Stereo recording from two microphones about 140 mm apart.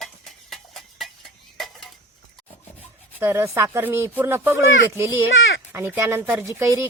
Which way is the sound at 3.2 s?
20° right (ahead or behind).